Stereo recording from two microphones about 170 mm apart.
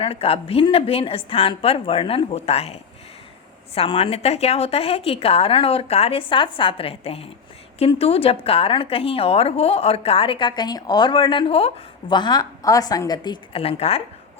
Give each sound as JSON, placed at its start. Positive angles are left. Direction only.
{"t": 0.0, "sound": "a woman's voice", "side_deg": 35}
{"t": 3.8, "sound": "a woman's voice", "side_deg": 35}